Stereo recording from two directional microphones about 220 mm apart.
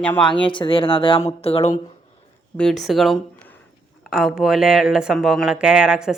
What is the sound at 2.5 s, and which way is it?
Speech, centre (ahead or behind).